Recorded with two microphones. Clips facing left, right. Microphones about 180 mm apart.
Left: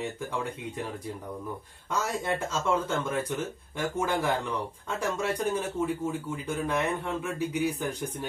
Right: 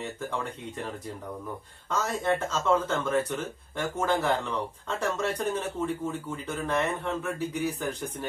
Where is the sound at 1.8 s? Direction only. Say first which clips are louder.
Right 2 dB; 10° left (ahead or behind).